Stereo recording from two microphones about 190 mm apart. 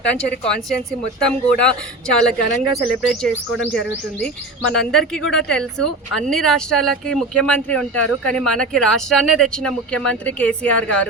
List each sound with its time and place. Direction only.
0.1 s speech: 5° left (ahead or behind)